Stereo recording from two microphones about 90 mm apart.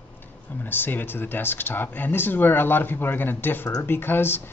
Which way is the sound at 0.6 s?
20° left (ahead or behind).